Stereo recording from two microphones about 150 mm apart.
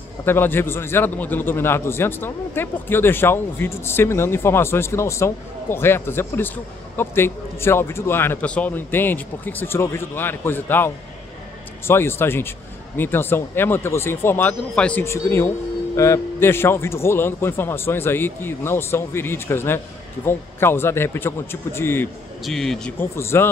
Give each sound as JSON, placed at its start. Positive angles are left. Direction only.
{"t": 0.2, "sound": "a man's voice", "side_deg": 15}
{"t": 11.9, "sound": "a man's voice", "side_deg": 15}
{"t": 22.4, "sound": "a man's voice", "side_deg": 0}
{"t": 22.9, "sound": "a man's voice", "side_deg": 15}